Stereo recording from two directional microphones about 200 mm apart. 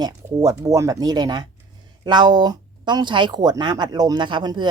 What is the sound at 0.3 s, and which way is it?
Speech, 15° right (ahead or behind).